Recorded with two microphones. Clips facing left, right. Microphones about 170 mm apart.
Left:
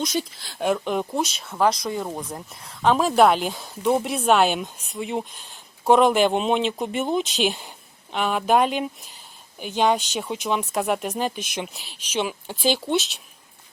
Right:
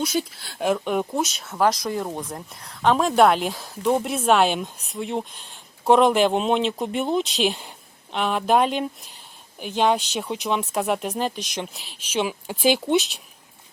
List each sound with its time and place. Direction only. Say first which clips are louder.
0.0 s speech: right 1 dB; 10° right (ahead or behind)